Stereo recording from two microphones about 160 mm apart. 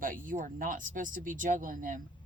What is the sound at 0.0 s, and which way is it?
Speech, 60° right (ahead or behind).